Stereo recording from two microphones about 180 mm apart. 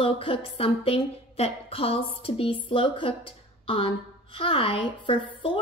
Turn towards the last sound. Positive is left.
turn(degrees=30)  # may be behind; listen again after turning